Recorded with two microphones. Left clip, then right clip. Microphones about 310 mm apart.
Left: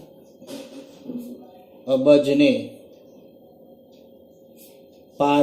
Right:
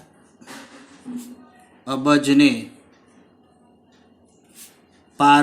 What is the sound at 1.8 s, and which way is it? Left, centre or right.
Speech, right.